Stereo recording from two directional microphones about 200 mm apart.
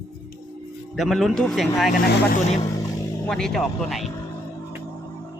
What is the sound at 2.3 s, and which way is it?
Speech, 30° left (ahead or behind).